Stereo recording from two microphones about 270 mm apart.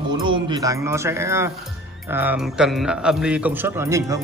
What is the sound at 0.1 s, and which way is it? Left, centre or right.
A man's voice, centre.